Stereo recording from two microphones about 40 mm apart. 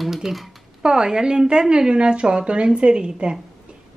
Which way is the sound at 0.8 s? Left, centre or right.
Centre.